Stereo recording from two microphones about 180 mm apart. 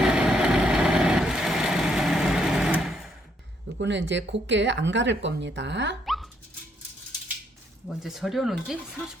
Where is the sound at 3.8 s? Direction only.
85° right.